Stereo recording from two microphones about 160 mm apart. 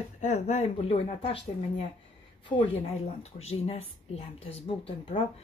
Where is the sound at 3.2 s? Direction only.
40° left (ahead or behind).